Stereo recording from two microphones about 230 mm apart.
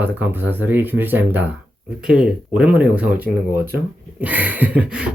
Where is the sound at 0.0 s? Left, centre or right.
Centre.